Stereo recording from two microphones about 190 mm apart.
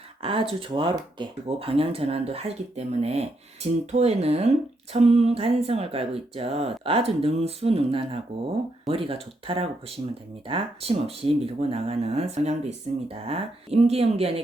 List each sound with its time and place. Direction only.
0.2 s speech: 30° right (ahead or behind)